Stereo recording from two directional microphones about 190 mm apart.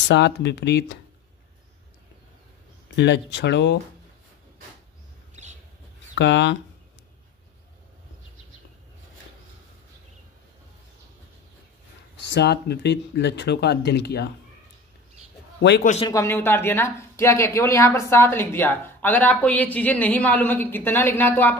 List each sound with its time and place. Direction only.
0.1 s speech: 65° left (ahead or behind)
3.0 s speech: 65° left (ahead or behind)
5.3 s a sound: 35° right (ahead or behind)
6.1 s speech: 70° left (ahead or behind)
12.3 s speech: 60° left (ahead or behind)
15.8 s speech: 35° left (ahead or behind)
16.1 s a woman's voice: 15° left (ahead or behind)